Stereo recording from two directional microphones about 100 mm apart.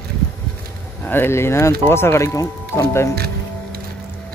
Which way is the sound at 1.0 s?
20° left (ahead or behind).